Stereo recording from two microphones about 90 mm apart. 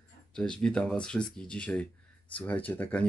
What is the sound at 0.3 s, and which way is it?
Speech, 10° left (ahead or behind).